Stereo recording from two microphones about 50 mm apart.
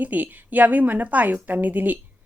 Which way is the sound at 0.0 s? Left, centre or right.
Right.